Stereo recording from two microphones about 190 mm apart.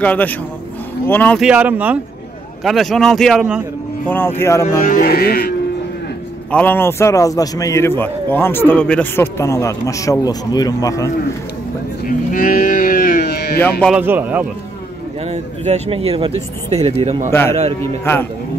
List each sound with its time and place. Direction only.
0.0 s a man's voice: 10° left (ahead or behind)
1.4 s speech: 5° right (ahead or behind)
4.1 s a man's voice: 10° left (ahead or behind)
4.7 s music: 45° left (ahead or behind)
6.5 s a man's voice: 10° left (ahead or behind)
12.1 s speech: 45° left (ahead or behind)
13.6 s a man's voice: 5° left (ahead or behind)
13.9 s speech: 10° right (ahead or behind)
15.2 s speech: 35° right (ahead or behind)
17.3 s a man's voice: 10° left (ahead or behind)